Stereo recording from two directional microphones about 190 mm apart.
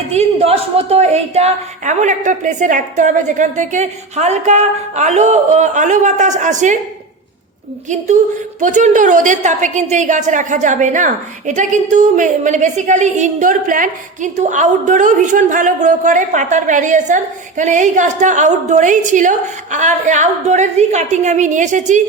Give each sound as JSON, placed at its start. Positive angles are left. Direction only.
{"t": 0.1, "sound": "a woman's voice", "side_deg": -35}
{"t": 7.9, "sound": "a woman's voice", "side_deg": -40}